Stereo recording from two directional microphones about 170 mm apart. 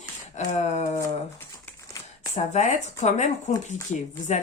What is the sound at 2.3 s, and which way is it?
Speech, 45° left (ahead or behind).